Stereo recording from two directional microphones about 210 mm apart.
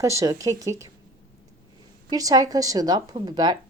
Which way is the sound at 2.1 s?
15° right (ahead or behind).